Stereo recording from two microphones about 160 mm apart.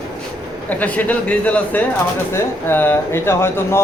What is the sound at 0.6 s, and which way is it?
Speech, 10° left (ahead or behind).